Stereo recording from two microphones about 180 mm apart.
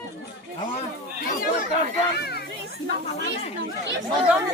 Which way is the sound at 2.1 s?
60° left (ahead or behind).